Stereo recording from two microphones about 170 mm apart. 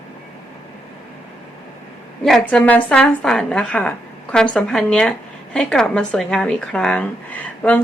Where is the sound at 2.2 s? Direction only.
5° left (ahead or behind).